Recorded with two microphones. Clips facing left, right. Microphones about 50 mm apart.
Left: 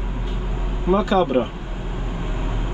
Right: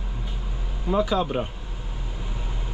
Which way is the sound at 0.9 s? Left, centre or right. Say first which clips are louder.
Left 5 dB; left.